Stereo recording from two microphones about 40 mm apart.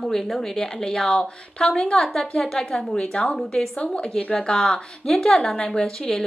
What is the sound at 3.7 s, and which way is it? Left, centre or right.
A woman's voice, left.